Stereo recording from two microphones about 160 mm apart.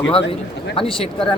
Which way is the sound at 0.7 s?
35° left (ahead or behind).